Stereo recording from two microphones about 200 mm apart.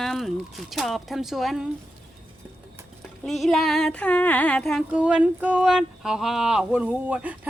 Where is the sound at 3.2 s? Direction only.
Centre (ahead or behind).